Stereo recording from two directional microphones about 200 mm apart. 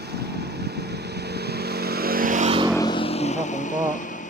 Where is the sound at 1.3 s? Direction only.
55° right (ahead or behind).